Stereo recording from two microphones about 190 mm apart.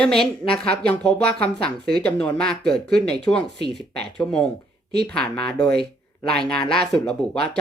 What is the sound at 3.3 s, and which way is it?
Speech, 20° left (ahead or behind).